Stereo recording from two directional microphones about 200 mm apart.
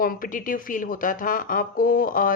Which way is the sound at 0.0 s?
45° left (ahead or behind).